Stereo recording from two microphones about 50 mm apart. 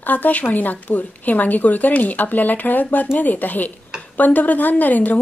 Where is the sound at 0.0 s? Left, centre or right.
Left.